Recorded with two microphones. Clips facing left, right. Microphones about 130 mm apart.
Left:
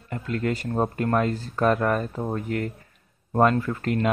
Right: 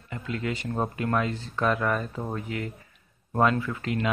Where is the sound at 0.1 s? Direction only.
45° left (ahead or behind).